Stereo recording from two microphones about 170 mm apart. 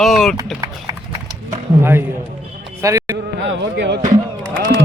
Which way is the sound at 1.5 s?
15° right (ahead or behind).